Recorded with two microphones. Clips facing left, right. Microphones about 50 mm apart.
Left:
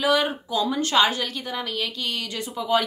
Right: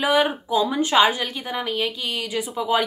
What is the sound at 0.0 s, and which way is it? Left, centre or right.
A woman's voice, centre.